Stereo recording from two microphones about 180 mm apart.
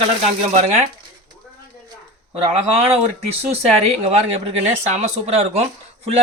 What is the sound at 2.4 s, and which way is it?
A man's voice, 35° right (ahead or behind).